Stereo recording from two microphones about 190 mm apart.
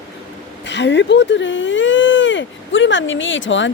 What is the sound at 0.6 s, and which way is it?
Speech, 70° left (ahead or behind).